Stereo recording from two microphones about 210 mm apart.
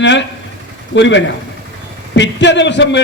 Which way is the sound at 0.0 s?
60° left (ahead or behind).